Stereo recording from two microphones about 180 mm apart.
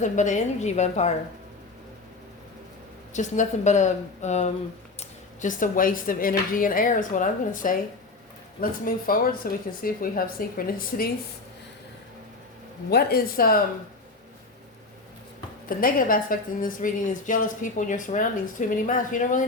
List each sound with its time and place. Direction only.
0.0 s speech: 45° left (ahead or behind)
3.1 s a woman's voice: 40° left (ahead or behind)
12.9 s speech: 60° left (ahead or behind)
15.8 s a woman's voice: 50° left (ahead or behind)